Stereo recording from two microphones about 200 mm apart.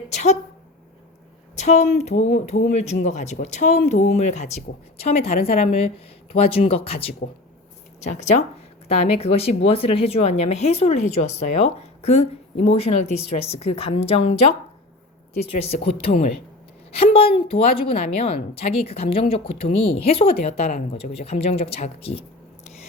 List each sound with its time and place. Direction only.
0.1 s speech: 35° left (ahead or behind)
1.5 s speech: 35° left (ahead or behind)
15.4 s speech: 30° left (ahead or behind)